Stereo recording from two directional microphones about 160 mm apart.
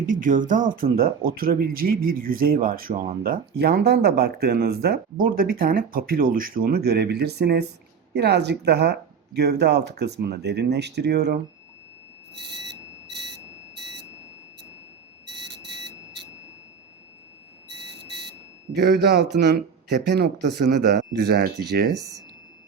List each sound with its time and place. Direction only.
0.1 s speech: 55° right (ahead or behind)
3.2 s speech: 75° right (ahead or behind)
18.7 s speech: 90° right
21.2 s speech: 75° right (ahead or behind)